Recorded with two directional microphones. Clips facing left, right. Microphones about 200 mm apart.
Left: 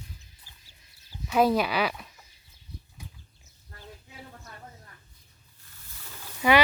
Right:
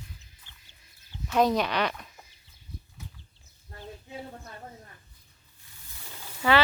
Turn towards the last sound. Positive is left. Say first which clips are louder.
# left 2 dB
turn(degrees=15)  # may be behind; listen again after turning